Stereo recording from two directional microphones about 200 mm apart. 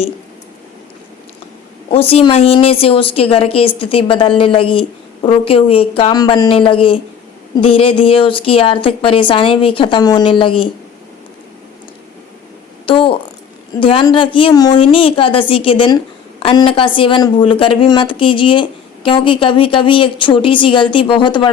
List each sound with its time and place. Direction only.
1.9 s a woman's voice: 30° left (ahead or behind)
12.8 s a sound: 25° left (ahead or behind)
13.7 s a woman's voice: 25° left (ahead or behind)